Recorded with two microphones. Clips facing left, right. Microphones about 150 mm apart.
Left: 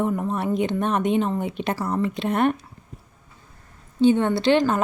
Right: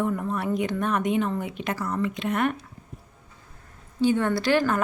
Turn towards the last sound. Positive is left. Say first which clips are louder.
# left 3 dB
turn(degrees=20)  # may be behind; listen again after turning